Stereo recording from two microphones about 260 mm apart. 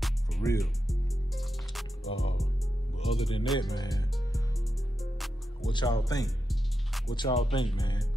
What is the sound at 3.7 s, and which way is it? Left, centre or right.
Music, centre.